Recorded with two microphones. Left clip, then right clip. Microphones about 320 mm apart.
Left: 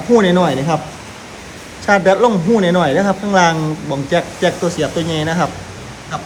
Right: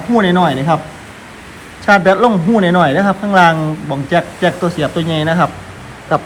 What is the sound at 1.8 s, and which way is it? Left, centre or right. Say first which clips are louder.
A man's voice: right 2 dB; right.